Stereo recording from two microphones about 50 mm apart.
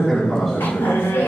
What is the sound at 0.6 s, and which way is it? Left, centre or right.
Speech, left.